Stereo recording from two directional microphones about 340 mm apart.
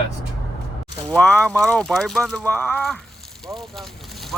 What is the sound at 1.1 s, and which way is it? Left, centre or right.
Speech, centre.